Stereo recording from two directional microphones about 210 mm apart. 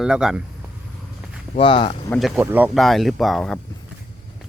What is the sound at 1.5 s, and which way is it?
Speech, 25° left (ahead or behind).